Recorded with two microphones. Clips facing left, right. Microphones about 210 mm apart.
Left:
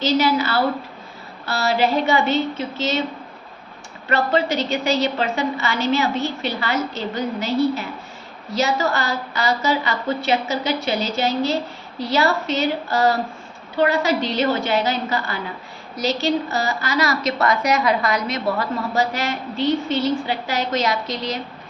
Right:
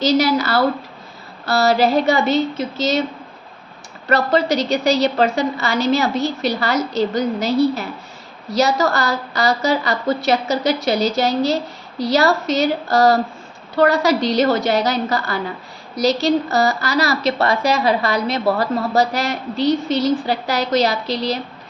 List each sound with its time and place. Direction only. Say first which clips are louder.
0.0 s a woman's voice: right 3 dB; 40° right (ahead or behind)
4.1 s a woman's voice: right 3 dB; 40° right (ahead or behind)